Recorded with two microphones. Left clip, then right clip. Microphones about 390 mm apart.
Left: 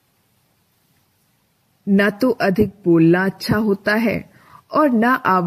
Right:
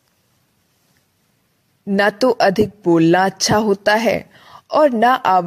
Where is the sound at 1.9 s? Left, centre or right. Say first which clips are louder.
Right 3 dB; centre.